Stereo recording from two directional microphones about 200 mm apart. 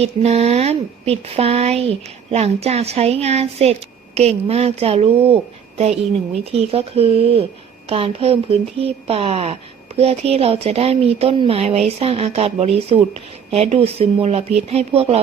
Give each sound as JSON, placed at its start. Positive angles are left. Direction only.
{"t": 0.0, "sound": "speech", "side_deg": -30}